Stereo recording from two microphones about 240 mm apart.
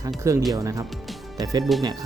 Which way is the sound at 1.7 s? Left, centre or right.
Centre.